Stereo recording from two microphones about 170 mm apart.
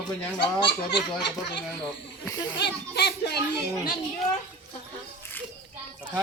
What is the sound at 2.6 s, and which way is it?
A child's voice, 75° left (ahead or behind).